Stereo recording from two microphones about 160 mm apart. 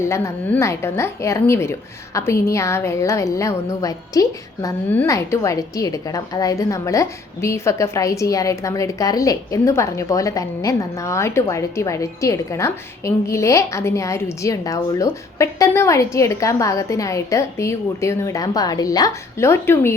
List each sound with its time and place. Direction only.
0.0 s a woman's voice: 15° left (ahead or behind)